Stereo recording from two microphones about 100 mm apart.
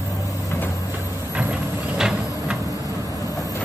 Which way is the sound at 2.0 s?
5° right (ahead or behind).